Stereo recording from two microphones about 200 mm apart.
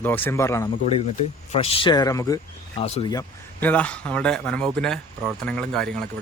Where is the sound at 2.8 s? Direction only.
30° left (ahead or behind).